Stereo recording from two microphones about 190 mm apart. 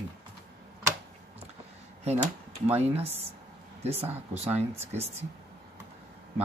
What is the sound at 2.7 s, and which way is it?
Speech, 30° right (ahead or behind).